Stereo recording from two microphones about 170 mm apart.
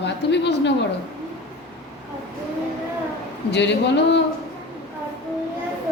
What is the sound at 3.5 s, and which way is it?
Speech, 90° left.